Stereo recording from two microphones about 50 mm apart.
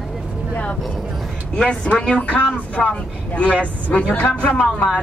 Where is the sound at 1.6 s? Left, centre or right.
Left.